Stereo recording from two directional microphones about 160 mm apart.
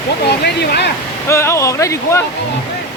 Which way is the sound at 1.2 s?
15° left (ahead or behind).